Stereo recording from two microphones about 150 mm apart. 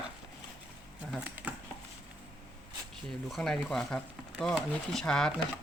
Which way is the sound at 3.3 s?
5° left (ahead or behind).